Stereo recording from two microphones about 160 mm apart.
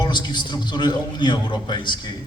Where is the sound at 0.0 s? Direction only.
25° left (ahead or behind).